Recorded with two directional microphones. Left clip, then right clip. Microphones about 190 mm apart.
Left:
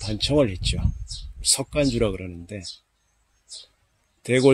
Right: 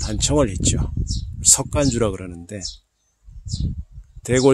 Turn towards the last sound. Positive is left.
turn(degrees=-15)  # may be behind; listen again after turning